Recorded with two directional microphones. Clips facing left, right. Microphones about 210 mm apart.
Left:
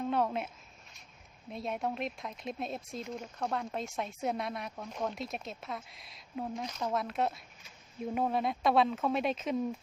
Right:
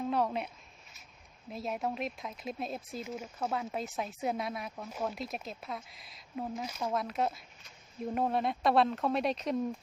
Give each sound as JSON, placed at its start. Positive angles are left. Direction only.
{"t": 0.0, "sound": "speech", "side_deg": 0}